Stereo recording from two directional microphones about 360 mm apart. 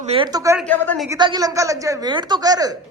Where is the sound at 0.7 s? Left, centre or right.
Centre.